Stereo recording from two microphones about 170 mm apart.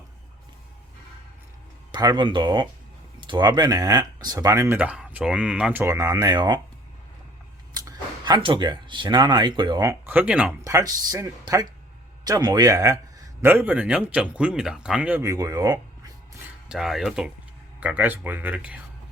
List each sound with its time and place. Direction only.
1.9 s speech: 25° right (ahead or behind)
7.7 s speech: 25° right (ahead or behind); by 10.5 s 10° right (ahead or behind)
10.6 s speech: 20° right (ahead or behind)
16.6 s speech: 5° right (ahead or behind)